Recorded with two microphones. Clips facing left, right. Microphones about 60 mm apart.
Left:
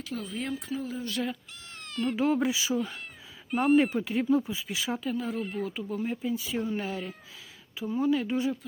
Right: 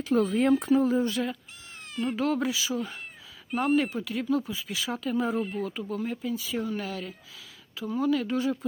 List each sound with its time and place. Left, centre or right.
0.0 s speech: right
1.1 s speech: centre
1.9 s speech: centre
2.1 s speech: centre
3.5 s speech: centre
4.0 s speech: left
5.1 s speech: centre
5.5 s speech: centre